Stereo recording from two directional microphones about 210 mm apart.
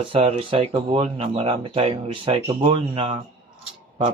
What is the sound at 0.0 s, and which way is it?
Speech, 25° right (ahead or behind).